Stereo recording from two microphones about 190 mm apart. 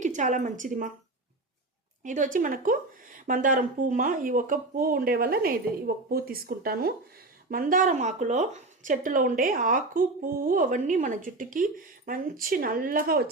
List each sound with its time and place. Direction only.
0.0 s a woman's voice: 40° right (ahead or behind)
2.0 s a woman's voice: 45° right (ahead or behind)